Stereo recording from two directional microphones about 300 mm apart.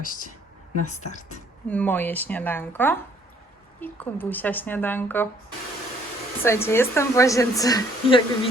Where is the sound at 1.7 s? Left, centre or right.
Centre.